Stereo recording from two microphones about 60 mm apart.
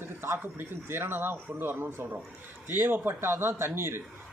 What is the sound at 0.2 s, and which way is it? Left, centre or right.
A man's voice, right.